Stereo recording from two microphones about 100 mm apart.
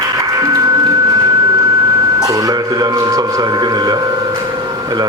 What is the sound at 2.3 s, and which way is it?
A man's voice, 35° right (ahead or behind).